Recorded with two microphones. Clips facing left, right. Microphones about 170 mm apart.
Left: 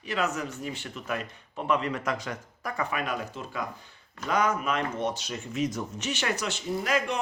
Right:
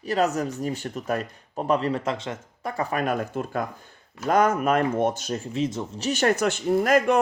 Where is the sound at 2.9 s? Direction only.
45° right (ahead or behind).